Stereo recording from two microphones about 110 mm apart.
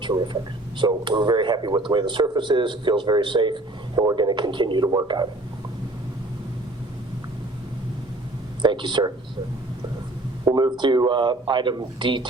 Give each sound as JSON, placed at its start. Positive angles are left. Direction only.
{"t": 0.8, "sound": "speech", "side_deg": -45}
{"t": 8.6, "sound": "speech", "side_deg": -45}
{"t": 10.4, "sound": "speech", "side_deg": -40}